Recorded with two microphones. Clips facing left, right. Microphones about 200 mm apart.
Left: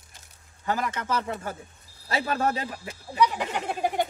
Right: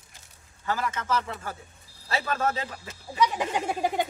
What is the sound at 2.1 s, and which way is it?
Speech, 15° left (ahead or behind).